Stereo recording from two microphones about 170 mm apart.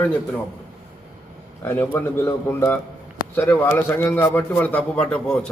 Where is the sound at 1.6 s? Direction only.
10° left (ahead or behind).